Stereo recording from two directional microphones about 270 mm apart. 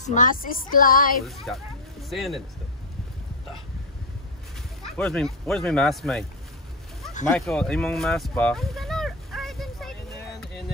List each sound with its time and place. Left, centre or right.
0.0 s speech: left
1.2 s speech: centre
4.8 s speech: centre
7.2 s a sound: centre